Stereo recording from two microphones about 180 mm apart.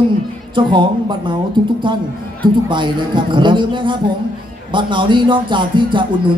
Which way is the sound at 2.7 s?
25° right (ahead or behind).